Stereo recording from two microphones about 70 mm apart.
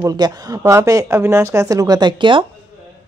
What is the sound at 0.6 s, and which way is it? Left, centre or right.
A woman's voice, right.